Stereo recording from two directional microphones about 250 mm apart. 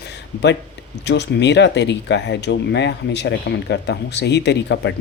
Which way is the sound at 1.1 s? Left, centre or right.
Left.